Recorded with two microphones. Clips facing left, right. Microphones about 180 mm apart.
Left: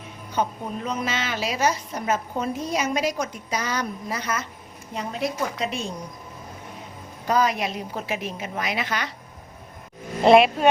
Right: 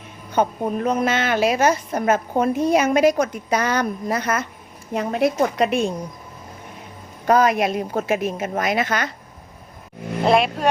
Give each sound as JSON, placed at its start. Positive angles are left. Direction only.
{"t": 0.3, "sound": "a woman's voice", "side_deg": -55}
{"t": 7.3, "sound": "a woman's voice", "side_deg": -55}
{"t": 10.2, "sound": "speech", "side_deg": 0}